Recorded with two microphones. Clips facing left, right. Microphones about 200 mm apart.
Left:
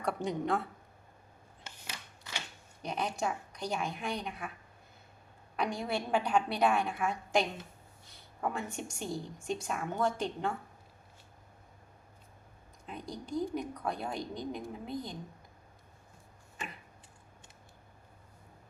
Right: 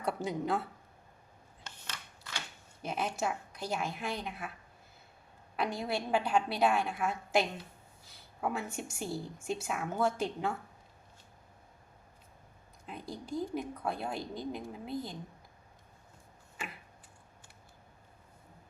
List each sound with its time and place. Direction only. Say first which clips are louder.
0.0 s a woman's voice: left 1 dB; 5° right (ahead or behind)
1.6 s a sound: left 1 dB; 15° left (ahead or behind)
2.8 s a woman's voice: even; 5° right (ahead or behind)
5.5 s a woman's voice: even; 5° right (ahead or behind)
12.8 s a woman's voice: left 1 dB; 5° right (ahead or behind)